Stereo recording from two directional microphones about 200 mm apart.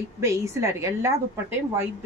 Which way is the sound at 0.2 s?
15° right (ahead or behind).